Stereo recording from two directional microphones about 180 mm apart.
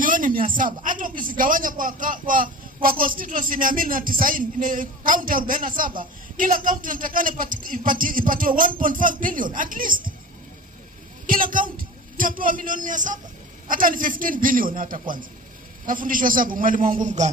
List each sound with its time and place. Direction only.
0.0 s a sound: 50° right (ahead or behind)
0.8 s a man's voice: 50° right (ahead or behind)
11.2 s a man's voice: 50° right (ahead or behind)